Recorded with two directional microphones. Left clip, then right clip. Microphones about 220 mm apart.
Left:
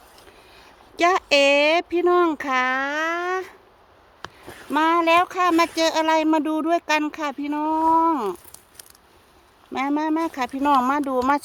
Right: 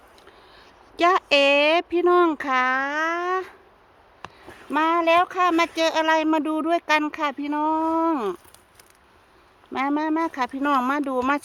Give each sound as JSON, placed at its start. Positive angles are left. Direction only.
{"t": 0.5, "sound": "speech", "side_deg": 0}
{"t": 4.2, "sound": "a sound", "side_deg": 35}
{"t": 4.7, "sound": "speech", "side_deg": 10}
{"t": 9.7, "sound": "speech", "side_deg": 0}